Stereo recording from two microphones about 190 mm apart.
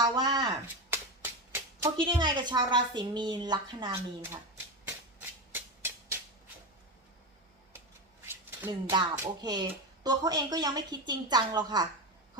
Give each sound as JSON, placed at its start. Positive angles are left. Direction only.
{"t": 0.0, "sound": "chopping", "side_deg": -20}
{"t": 0.9, "sound": "a sound", "side_deg": -10}
{"t": 2.0, "sound": "speech", "side_deg": -25}
{"t": 5.5, "sound": "music", "side_deg": -10}
{"t": 8.9, "sound": "speech", "side_deg": -15}